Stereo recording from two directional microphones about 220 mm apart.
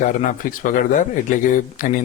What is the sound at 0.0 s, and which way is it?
Speech, 35° left (ahead or behind).